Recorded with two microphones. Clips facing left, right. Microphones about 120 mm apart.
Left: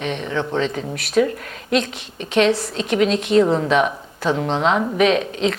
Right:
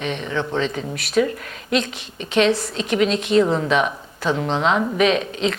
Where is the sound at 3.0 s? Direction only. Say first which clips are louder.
Left 2 dB; 40° left (ahead or behind).